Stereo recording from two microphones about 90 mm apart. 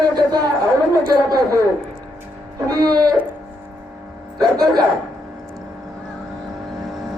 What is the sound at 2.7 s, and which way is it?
Speech, 45° right (ahead or behind).